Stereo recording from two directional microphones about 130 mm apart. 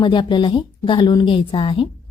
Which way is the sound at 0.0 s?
35° left (ahead or behind).